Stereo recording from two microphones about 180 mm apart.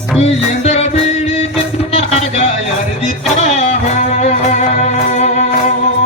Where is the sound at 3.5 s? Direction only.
35° left (ahead or behind).